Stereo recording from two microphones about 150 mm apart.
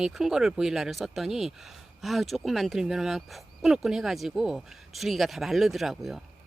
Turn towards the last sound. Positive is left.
turn(degrees=0)  # may be behind; listen again after turning